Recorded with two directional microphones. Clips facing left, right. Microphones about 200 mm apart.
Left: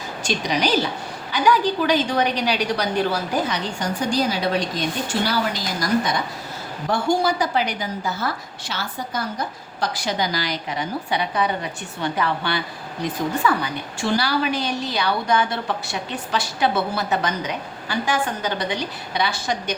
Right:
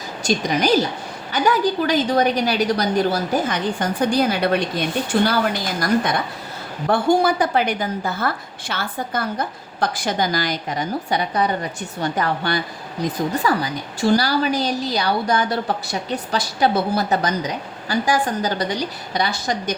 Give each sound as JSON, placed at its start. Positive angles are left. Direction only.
{"t": 0.3, "sound": "a woman's voice", "side_deg": -50}